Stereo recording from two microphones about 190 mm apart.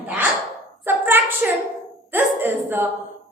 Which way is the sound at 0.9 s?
10° right (ahead or behind).